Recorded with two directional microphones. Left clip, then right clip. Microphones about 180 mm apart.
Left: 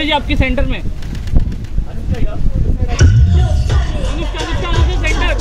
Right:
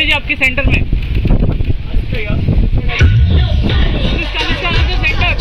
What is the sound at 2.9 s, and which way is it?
Music, 10° right (ahead or behind).